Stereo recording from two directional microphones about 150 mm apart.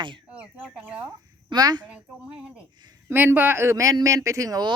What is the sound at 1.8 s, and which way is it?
A woman's voice, 10° right (ahead or behind).